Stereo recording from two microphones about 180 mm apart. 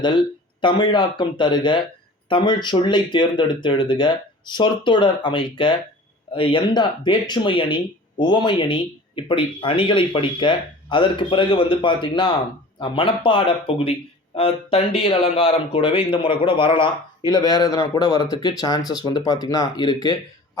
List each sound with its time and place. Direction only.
0.6 s speech: 25° left (ahead or behind)